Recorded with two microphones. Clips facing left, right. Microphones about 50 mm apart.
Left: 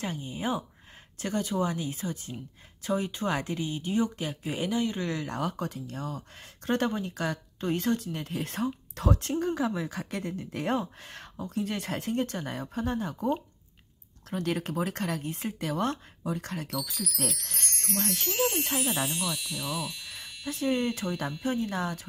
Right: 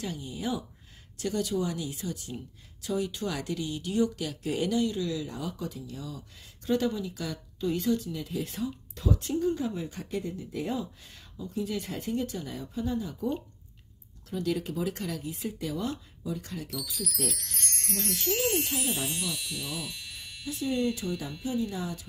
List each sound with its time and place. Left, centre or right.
0.0 s speech: left
4.9 s speech: left
14.3 s speech: left
16.7 s wind chime: centre
17.9 s wind chime: left
18.3 s wind chime: centre
20.4 s speech: left